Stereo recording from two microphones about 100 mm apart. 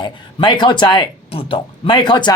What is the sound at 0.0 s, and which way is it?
Speech, 50° left (ahead or behind).